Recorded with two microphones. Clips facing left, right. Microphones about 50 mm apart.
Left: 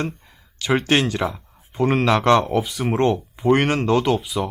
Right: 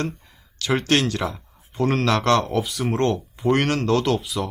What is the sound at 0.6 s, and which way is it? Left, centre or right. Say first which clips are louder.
Speech: left 2 dB; centre.